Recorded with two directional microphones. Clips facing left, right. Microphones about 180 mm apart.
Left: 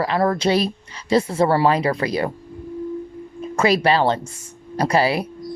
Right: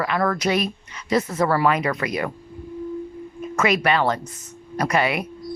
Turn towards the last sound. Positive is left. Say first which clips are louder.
# left 3 dB
turn(degrees=30)  # may be behind; listen again after turning